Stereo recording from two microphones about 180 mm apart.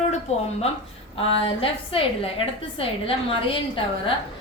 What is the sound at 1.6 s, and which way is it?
A woman's voice, 30° left (ahead or behind).